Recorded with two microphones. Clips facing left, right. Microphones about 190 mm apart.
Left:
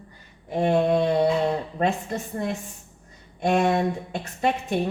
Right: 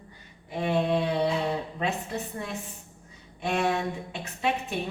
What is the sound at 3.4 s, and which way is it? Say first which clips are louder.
A woman's voice: left 6 dB; 40° left (ahead or behind).